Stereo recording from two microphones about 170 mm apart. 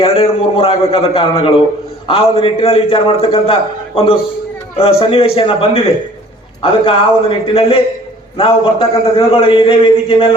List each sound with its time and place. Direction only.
0.0 s a man's voice: 35° left (ahead or behind)